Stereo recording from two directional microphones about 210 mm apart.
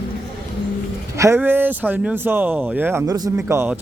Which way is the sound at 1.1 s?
15° right (ahead or behind).